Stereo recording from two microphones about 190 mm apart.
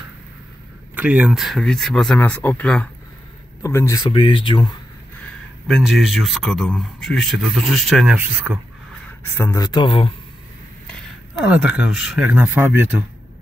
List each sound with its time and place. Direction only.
0.9 s speech: 5° right (ahead or behind); by 4.7 s 25° left (ahead or behind)
5.7 s speech: centre (ahead or behind)
9.2 s speech: 15° left (ahead or behind)
11.4 s speech: 5° right (ahead or behind)